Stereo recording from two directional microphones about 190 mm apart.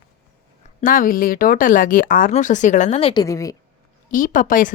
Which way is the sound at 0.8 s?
45° left (ahead or behind).